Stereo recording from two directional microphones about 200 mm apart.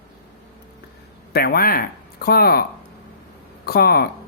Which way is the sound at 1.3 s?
50° left (ahead or behind).